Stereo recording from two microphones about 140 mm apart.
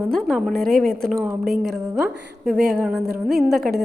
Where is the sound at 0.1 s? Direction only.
Centre (ahead or behind).